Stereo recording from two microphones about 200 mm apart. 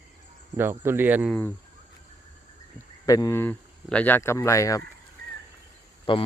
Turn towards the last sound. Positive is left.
turn(degrees=25)  # may be behind; listen again after turning